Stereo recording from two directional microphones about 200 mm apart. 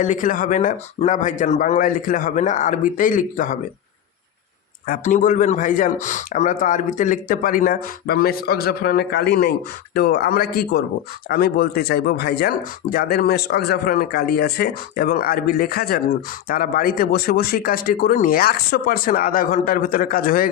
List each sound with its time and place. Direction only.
0.0 s speech: 40° left (ahead or behind)
4.9 s speech: 40° left (ahead or behind)